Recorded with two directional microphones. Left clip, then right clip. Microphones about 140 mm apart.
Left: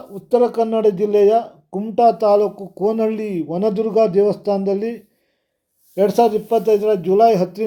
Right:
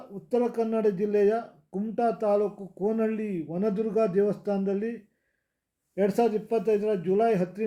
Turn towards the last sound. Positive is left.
turn(degrees=25)  # may be behind; listen again after turning